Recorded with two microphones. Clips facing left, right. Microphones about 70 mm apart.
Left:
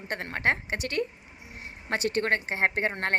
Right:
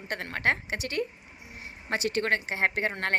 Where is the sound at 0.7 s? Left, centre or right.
Left.